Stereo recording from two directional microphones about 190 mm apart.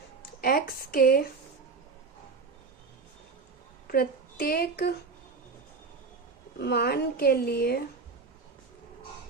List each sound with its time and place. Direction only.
0.4 s a woman's voice: 50° left (ahead or behind)
3.8 s speech: 50° left (ahead or behind)
6.6 s a woman's voice: 55° left (ahead or behind)